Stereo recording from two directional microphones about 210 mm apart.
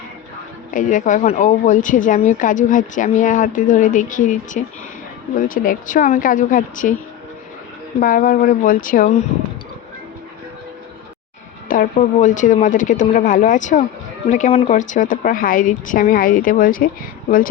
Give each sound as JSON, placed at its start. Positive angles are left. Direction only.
{"t": 0.7, "sound": "speech", "side_deg": 40}
{"t": 7.9, "sound": "speech", "side_deg": 40}
{"t": 11.7, "sound": "speech", "side_deg": 40}